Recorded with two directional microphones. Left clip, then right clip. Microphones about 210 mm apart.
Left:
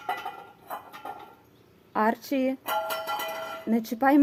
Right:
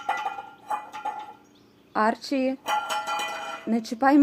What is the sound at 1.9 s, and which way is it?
Speech, 5° left (ahead or behind).